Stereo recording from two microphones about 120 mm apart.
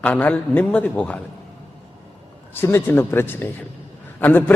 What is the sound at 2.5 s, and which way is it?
A man's voice, 20° left (ahead or behind).